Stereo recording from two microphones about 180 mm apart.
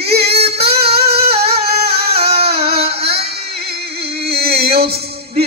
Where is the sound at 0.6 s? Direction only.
65° right (ahead or behind).